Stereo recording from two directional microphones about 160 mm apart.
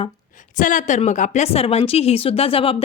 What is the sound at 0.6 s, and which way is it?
Speech, 55° left (ahead or behind).